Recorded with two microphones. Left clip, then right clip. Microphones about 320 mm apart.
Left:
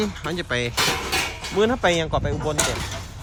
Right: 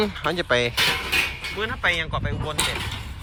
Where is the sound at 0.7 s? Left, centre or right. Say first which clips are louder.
Right 1 dB; left.